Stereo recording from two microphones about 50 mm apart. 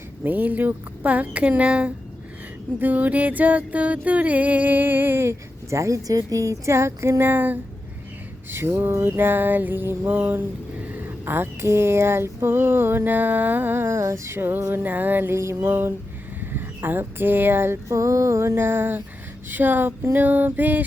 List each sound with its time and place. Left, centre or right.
0.3 s music: right
2.7 s music: right
5.2 s speech: right
6.4 s music: right
7.2 s music: right
8.4 s a sound: right
9.0 s speech: right
13.8 s a sound: right
14.3 s speech: right
15.3 s a sound: right
16.4 s speech: right
17.8 s music: right
18.5 s speech: right
19.5 s music: right